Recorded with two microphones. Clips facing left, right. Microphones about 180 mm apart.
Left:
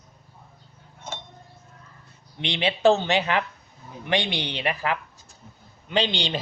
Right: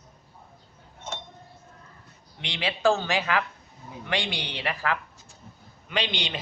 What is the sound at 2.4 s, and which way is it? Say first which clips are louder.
Speech: left 5 dB; 25° left (ahead or behind).